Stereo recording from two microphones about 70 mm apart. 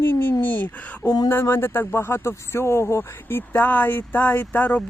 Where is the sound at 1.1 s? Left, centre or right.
Left.